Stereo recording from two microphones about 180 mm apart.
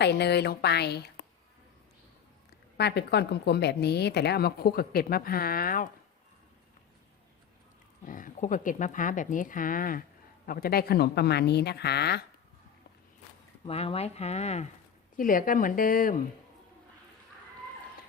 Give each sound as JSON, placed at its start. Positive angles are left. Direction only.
{"t": 0.0, "sound": "speech", "side_deg": 70}
{"t": 2.5, "sound": "a woman's voice", "side_deg": 65}
{"t": 8.0, "sound": "a woman's voice", "side_deg": 45}
{"t": 13.7, "sound": "speech", "side_deg": 35}
{"t": 15.1, "sound": "speech", "side_deg": 50}